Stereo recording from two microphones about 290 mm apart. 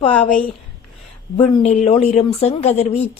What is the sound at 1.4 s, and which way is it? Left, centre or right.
A woman's voice, left.